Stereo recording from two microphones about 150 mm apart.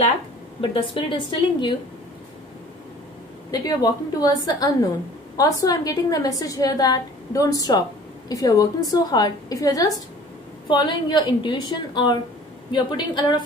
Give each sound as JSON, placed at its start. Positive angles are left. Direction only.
{"t": 0.6, "sound": "a woman's voice", "side_deg": 35}
{"t": 3.5, "sound": "a woman's voice", "side_deg": 25}